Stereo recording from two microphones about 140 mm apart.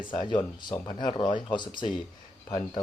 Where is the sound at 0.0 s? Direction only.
35° left (ahead or behind).